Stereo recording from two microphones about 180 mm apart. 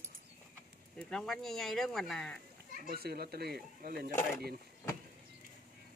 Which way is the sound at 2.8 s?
60° right (ahead or behind).